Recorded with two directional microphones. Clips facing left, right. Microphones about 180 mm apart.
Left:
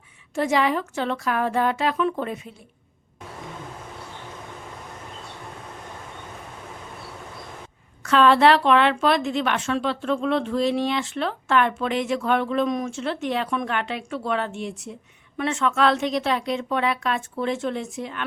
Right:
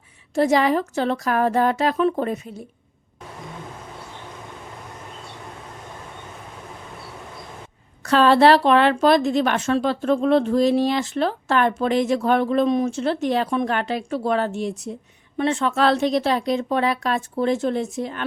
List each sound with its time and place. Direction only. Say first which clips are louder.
0.3 s a woman's voice: right 4 dB; 40° right (ahead or behind)
8.0 s a woman's voice: right 2 dB; 35° right (ahead or behind)